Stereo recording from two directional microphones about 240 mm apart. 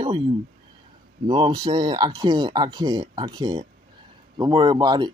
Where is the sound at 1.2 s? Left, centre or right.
Centre.